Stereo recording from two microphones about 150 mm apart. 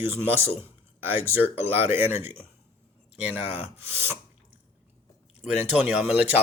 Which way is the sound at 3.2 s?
10° right (ahead or behind).